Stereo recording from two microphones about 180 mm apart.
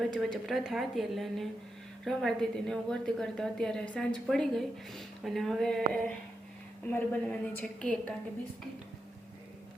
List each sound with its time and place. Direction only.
0.0 s a woman's voice: centre (ahead or behind)